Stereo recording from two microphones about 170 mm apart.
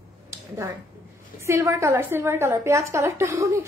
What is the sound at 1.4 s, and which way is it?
A woman's voice, 15° right (ahead or behind).